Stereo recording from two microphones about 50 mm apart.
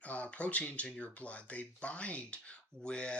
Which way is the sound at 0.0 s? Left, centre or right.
Left.